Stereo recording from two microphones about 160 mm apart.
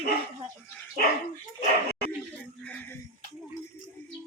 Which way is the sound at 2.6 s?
10° left (ahead or behind).